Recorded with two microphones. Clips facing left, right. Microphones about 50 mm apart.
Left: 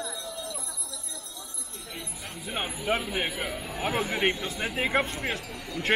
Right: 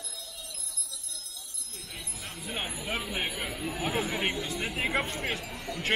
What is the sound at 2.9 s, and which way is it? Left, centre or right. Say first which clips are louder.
Speech: left 3 dB; centre.